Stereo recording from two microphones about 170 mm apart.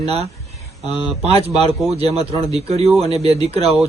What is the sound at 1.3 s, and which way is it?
A man's voice, 35° right (ahead or behind).